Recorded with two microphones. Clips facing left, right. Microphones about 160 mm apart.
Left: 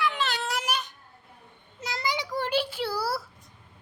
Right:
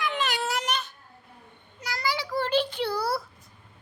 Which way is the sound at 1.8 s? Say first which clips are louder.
Even; 25° left (ahead or behind).